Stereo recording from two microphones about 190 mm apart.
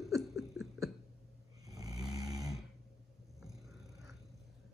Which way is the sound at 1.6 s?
20° right (ahead or behind).